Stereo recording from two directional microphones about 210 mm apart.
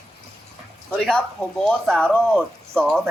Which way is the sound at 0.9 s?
5° left (ahead or behind).